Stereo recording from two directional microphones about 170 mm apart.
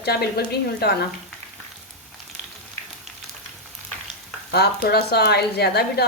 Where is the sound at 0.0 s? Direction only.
70° left (ahead or behind).